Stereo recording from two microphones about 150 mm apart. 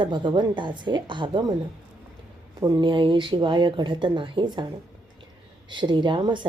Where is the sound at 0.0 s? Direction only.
30° right (ahead or behind).